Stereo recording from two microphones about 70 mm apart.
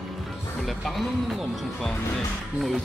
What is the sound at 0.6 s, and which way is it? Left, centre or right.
Speech, centre.